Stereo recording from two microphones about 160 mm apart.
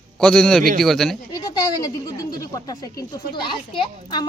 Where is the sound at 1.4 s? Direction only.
25° left (ahead or behind).